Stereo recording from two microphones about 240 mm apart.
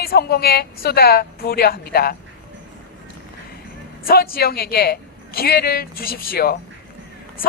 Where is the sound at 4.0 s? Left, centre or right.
Left.